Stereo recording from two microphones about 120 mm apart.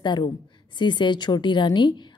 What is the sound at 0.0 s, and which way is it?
A woman's voice, 40° left (ahead or behind).